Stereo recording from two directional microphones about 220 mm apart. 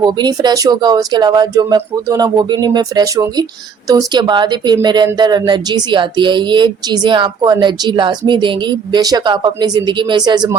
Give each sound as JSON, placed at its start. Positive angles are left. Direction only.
{"t": 0.0, "sound": "speech", "side_deg": -20}